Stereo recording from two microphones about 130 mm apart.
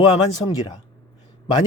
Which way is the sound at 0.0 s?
35° left (ahead or behind).